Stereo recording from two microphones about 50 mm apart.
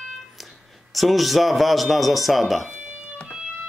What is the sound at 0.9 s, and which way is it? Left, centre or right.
Speech, centre.